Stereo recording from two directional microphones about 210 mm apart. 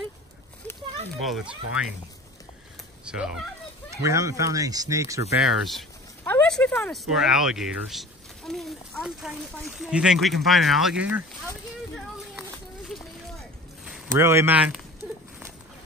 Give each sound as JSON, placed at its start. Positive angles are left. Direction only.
{"t": 1.2, "sound": "speech", "side_deg": -5}
{"t": 3.1, "sound": "speech", "side_deg": -5}
{"t": 4.0, "sound": "speech", "side_deg": -15}
{"t": 5.7, "sound": "speech", "side_deg": 5}
{"t": 13.4, "sound": "boat", "side_deg": 0}
{"t": 14.1, "sound": "speech", "side_deg": -10}